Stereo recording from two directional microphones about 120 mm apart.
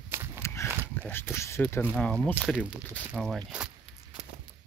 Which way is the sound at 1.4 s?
25° left (ahead or behind).